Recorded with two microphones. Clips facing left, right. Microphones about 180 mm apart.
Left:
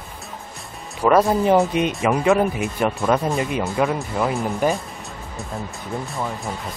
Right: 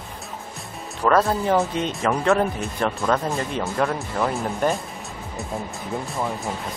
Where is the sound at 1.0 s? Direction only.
15° left (ahead or behind).